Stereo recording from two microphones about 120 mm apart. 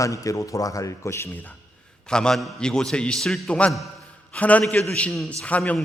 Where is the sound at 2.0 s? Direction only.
5° left (ahead or behind).